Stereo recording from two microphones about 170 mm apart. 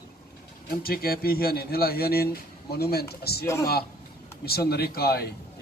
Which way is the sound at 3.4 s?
15° left (ahead or behind).